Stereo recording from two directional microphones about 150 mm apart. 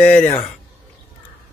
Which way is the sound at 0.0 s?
10° left (ahead or behind).